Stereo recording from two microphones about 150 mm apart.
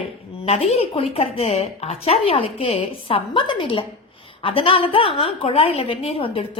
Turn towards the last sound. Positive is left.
turn(degrees=40)  # may be behind; listen again after turning